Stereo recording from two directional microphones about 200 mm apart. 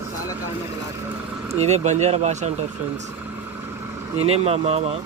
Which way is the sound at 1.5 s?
35° right (ahead or behind).